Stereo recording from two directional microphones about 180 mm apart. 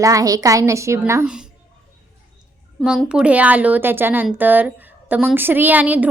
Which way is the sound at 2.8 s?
5° right (ahead or behind).